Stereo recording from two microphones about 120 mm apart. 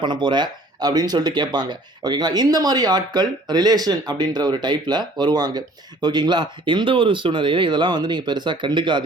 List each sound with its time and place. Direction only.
0.0 s speech: 40° right (ahead or behind)